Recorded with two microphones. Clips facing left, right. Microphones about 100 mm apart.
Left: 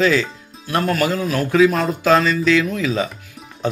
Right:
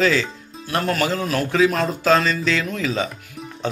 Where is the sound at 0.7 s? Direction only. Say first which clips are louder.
Left 2 dB; 40° left (ahead or behind).